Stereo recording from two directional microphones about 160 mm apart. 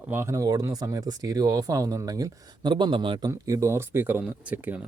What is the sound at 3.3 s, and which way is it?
Speech, 15° right (ahead or behind).